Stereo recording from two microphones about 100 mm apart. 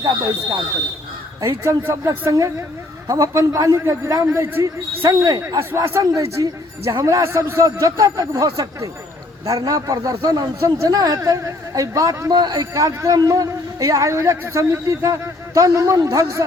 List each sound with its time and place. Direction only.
0.3 s a man's voice: 40° right (ahead or behind)
1.4 s a man's voice: 25° right (ahead or behind)
4.6 s a man's voice: 35° right (ahead or behind)
5.4 s a man's voice: 25° right (ahead or behind)